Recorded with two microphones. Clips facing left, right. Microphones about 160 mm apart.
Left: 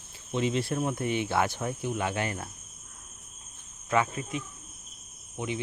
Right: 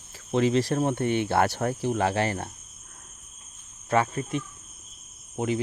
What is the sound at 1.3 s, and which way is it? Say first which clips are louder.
Speech: right 4 dB; 65° right (ahead or behind).